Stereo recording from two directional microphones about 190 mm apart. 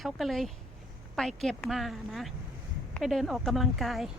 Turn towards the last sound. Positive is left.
turn(degrees=0)  # may be behind; listen again after turning